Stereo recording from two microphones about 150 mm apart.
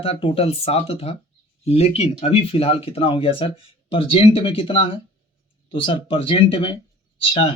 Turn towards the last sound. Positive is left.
turn(degrees=35)  # may be behind; listen again after turning